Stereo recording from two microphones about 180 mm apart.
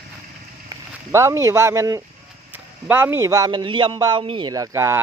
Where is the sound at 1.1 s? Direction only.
15° right (ahead or behind).